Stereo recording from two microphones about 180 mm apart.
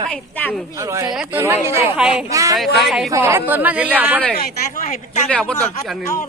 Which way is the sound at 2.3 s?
20° right (ahead or behind).